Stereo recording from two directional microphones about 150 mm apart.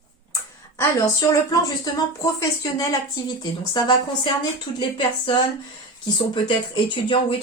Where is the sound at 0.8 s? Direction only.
20° left (ahead or behind).